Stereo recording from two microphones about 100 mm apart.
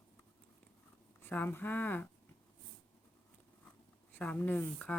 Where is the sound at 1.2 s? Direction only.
20° left (ahead or behind).